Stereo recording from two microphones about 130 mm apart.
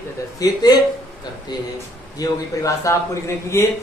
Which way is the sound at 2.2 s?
25° left (ahead or behind).